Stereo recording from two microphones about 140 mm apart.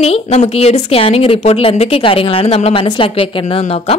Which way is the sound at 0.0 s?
45° left (ahead or behind).